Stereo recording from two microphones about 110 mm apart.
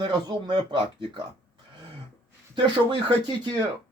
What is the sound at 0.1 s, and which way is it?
Speech, 45° right (ahead or behind).